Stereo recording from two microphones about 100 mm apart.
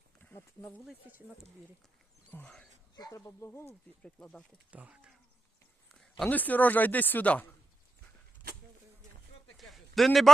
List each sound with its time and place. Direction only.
2.3 s speech: 15° left (ahead or behind)
2.9 s speech: 40° left (ahead or behind)
4.0 s speech: 10° left (ahead or behind)
4.5 s speech: 15° right (ahead or behind)
5.9 s a sound: 5° left (ahead or behind)
6.2 s speech: 15° left (ahead or behind)
9.6 s a sound: centre (ahead or behind)